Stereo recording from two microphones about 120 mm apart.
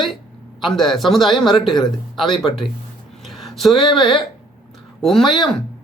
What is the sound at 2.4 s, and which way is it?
Speech, centre (ahead or behind).